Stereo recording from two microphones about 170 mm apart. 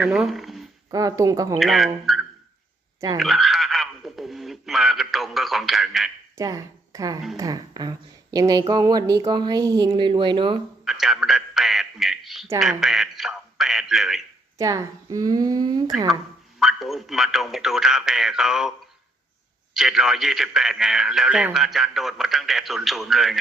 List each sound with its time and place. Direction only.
0.0 s speech: 5° right (ahead or behind)
0.9 s speech: 20° right (ahead or behind)
1.5 s a man's voice: centre (ahead or behind)
3.2 s a sound: centre (ahead or behind)
6.3 s speech: 20° right (ahead or behind)
10.8 s a sound: centre (ahead or behind)
12.5 s a man's voice: centre (ahead or behind)
14.6 s speech: 20° right (ahead or behind)
16.6 s a man's voice: centre (ahead or behind)
19.7 s a man's voice: 5° right (ahead or behind)